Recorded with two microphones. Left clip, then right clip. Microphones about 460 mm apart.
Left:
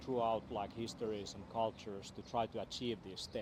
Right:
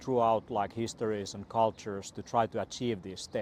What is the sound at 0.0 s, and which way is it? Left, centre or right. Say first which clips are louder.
Speech: right 9 dB; right.